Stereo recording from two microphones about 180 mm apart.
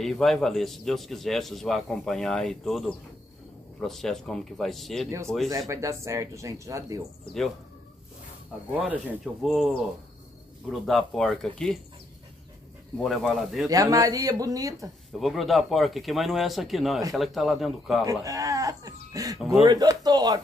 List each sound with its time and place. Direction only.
0.0 s a man's voice: centre (ahead or behind)
5.7 s speech: 15° right (ahead or behind)
8.7 s a man's voice: 5° right (ahead or behind)
10.7 s a man's voice: centre (ahead or behind)
12.9 s a man's voice: centre (ahead or behind)
13.7 s speech: 20° right (ahead or behind)
15.1 s a man's voice: centre (ahead or behind)
18.0 s speech: 20° right (ahead or behind)